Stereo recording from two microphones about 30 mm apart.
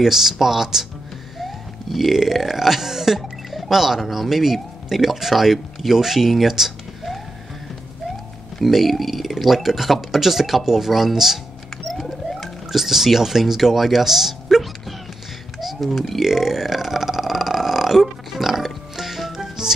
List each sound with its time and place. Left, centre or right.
0.0 s speech: centre
1.4 s speech: centre
3.2 s speech: centre
8.6 s speech: centre
11.9 s rodents: centre
12.8 s speech: centre
15.6 s burping: centre
19.3 s music: centre